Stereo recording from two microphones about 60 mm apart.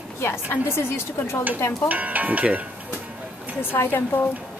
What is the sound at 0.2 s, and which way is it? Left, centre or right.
A woman's voice, left.